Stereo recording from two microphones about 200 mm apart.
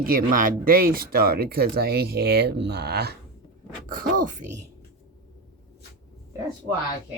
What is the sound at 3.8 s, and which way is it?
Speech, 45° right (ahead or behind).